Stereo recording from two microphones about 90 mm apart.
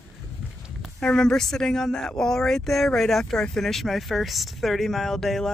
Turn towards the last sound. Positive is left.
turn(degrees=5)  # may be behind; listen again after turning